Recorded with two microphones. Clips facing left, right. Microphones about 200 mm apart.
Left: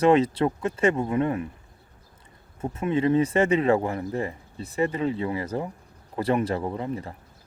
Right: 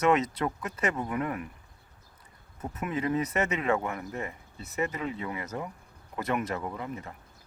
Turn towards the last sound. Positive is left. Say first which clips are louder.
# left 7 dB
turn(degrees=30)  # may be behind; listen again after turning